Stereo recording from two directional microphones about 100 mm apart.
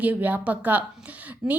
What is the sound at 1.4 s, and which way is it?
Speech, 5° right (ahead or behind).